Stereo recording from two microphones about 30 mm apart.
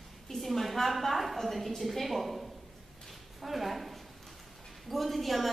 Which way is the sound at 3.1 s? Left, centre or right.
Centre.